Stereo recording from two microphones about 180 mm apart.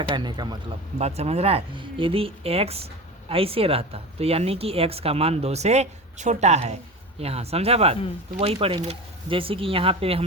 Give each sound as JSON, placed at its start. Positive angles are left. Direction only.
{"t": 0.1, "sound": "a man's voice", "side_deg": -25}
{"t": 0.9, "sound": "speech", "side_deg": -35}